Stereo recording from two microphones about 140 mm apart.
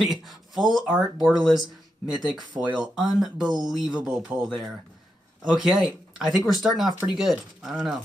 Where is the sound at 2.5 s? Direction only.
10° right (ahead or behind).